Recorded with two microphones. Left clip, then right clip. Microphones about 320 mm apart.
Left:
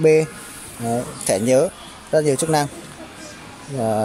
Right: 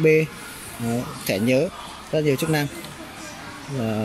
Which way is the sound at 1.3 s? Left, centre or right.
Left.